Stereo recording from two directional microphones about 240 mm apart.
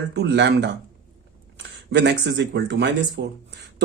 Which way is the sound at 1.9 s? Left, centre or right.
Right.